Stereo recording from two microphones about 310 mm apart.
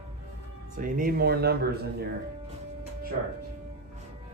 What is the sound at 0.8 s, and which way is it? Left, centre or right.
Speech, right.